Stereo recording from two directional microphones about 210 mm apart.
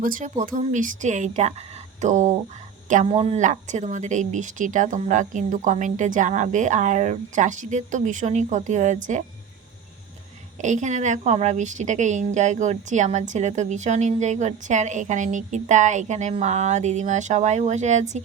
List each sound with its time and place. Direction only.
0.0 s a woman's voice: 40° right (ahead or behind)
10.6 s a woman's voice: 35° right (ahead or behind)